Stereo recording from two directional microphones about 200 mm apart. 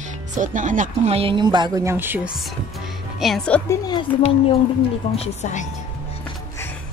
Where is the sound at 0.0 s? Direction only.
40° right (ahead or behind); by 5.7 s 35° left (ahead or behind).